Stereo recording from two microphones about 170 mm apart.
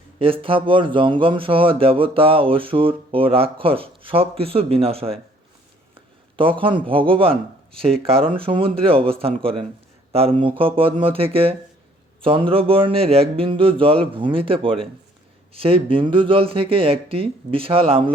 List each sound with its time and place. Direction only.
0.2 s speech: 30° right (ahead or behind)
6.3 s speech: 30° right (ahead or behind)